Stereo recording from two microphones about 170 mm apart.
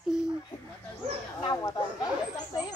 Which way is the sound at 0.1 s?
5° right (ahead or behind).